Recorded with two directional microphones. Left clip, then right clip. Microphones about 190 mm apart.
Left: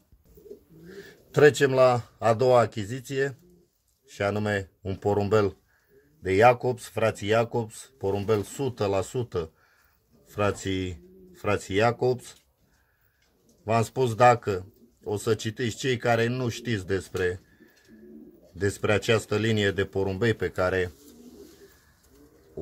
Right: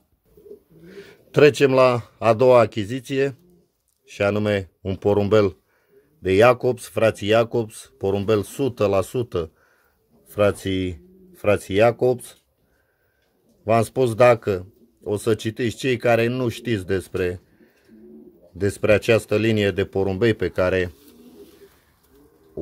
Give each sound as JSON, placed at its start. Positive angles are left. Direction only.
{"t": 0.8, "sound": "speech", "side_deg": -55}
{"t": 13.7, "sound": "speech", "side_deg": -50}
{"t": 18.6, "sound": "speech", "side_deg": -55}